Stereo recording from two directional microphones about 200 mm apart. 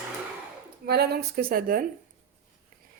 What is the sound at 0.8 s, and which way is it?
Speech, 50° right (ahead or behind).